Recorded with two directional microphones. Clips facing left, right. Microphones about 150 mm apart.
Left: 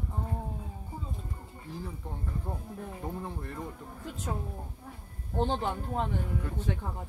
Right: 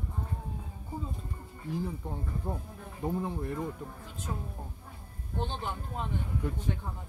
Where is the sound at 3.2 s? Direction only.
15° right (ahead or behind).